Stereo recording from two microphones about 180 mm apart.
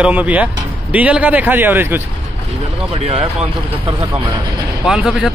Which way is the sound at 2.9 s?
35° right (ahead or behind).